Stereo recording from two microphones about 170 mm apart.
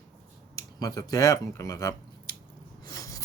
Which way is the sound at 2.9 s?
20° left (ahead or behind).